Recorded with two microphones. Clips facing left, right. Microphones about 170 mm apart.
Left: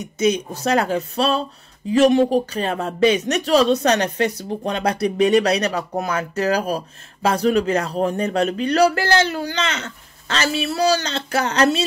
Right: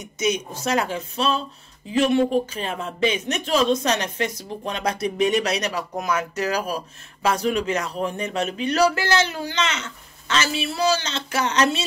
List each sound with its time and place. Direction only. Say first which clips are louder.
0.6 s speech: left 4 dB; 35° left (ahead or behind)